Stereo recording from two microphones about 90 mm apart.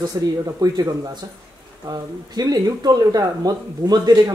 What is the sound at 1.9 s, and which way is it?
Speech, 45° right (ahead or behind).